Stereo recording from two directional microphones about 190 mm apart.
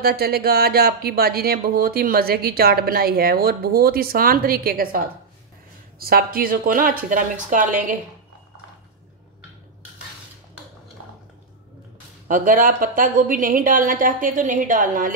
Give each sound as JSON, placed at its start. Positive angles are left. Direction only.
{"t": 0.0, "sound": "speech", "side_deg": -55}
{"t": 12.3, "sound": "speech", "side_deg": -45}